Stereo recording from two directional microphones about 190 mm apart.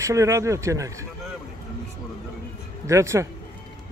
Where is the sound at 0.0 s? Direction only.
15° right (ahead or behind).